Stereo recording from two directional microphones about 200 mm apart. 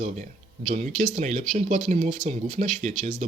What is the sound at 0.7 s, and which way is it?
Speech, 40° right (ahead or behind).